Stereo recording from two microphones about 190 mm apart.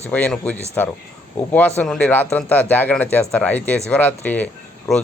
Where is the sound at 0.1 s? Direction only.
5° left (ahead or behind).